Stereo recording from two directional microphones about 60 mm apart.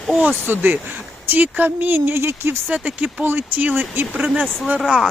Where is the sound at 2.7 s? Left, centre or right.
Right.